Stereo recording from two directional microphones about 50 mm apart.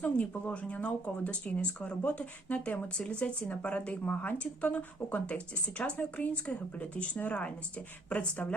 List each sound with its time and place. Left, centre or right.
0.0 s speech: left